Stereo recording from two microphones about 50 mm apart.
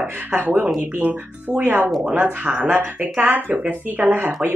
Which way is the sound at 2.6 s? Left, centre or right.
Right.